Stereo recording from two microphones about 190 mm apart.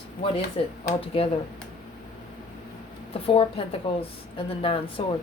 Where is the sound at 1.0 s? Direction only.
30° left (ahead or behind).